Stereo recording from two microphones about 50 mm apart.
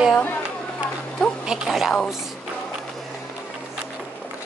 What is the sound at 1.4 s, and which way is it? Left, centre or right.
Speech, centre.